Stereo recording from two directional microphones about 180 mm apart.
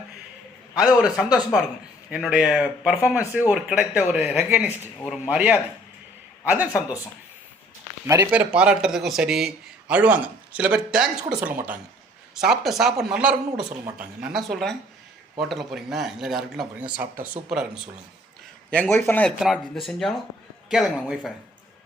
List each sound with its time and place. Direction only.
0.8 s a man's voice: 5° right (ahead or behind)
8.0 s a man's voice: 15° right (ahead or behind)
18.7 s speech: 10° left (ahead or behind)
19.4 s speech: centre (ahead or behind)